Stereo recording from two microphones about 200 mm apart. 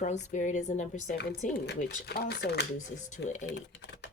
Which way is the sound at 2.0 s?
50° left (ahead or behind).